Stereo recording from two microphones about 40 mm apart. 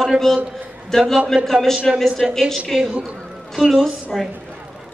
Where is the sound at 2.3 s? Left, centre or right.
Centre.